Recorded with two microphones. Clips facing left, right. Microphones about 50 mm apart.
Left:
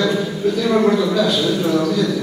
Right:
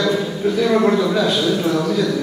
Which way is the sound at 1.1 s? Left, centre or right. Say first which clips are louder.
Even; right.